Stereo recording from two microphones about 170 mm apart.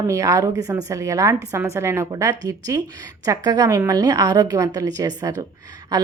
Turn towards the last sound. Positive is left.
turn(degrees=-20)  # may be behind; listen again after turning